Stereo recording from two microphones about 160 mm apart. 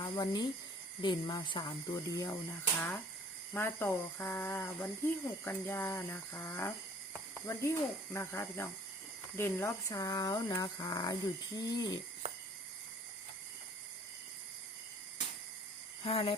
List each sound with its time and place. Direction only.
0.0 s speech: 25° left (ahead or behind)
3.5 s speech: 15° left (ahead or behind)
16.0 s a sound: 35° left (ahead or behind)